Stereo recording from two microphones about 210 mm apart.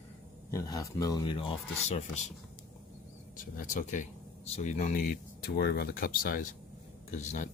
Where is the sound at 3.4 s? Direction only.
40° left (ahead or behind).